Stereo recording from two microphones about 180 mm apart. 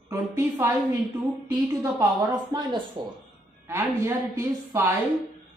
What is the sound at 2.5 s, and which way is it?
A woman's voice, 25° right (ahead or behind).